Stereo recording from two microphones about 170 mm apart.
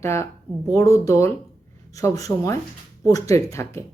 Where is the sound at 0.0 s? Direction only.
15° left (ahead or behind).